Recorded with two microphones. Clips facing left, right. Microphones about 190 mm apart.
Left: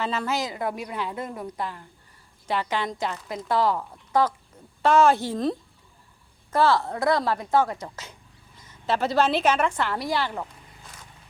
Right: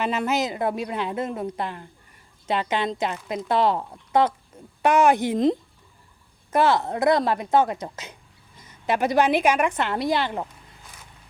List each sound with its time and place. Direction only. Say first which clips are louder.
0.0 s a woman's voice: right 3 dB; 20° right (ahead or behind)